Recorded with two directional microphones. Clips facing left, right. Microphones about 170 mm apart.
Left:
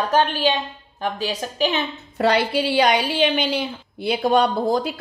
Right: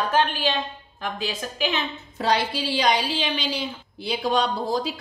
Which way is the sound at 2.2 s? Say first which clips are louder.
Left 5 dB; 60° left (ahead or behind).